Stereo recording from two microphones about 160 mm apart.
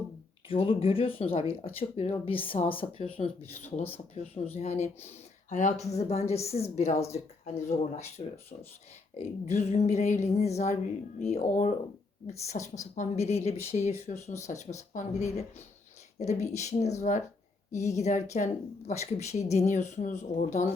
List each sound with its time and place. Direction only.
0.4 s speech: 35° left (ahead or behind)
9.1 s speech: 45° left (ahead or behind)